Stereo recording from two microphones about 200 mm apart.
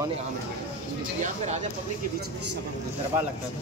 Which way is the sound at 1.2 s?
35° right (ahead or behind).